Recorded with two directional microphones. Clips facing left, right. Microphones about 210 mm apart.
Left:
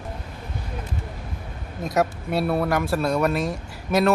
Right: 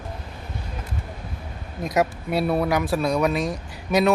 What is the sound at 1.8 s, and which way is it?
Speech, centre (ahead or behind).